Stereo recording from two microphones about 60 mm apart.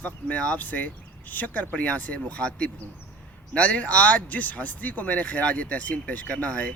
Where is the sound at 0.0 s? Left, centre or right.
Left.